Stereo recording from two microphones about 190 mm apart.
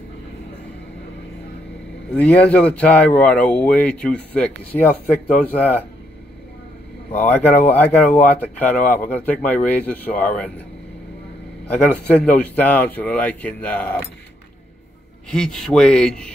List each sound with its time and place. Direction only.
2.1 s speech: 5° left (ahead or behind)
7.1 s speech: 10° left (ahead or behind)
11.6 s speech: 10° left (ahead or behind)
15.3 s speech: 5° left (ahead or behind)